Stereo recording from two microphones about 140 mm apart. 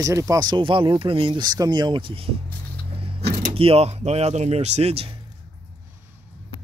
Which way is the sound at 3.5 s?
45° right (ahead or behind).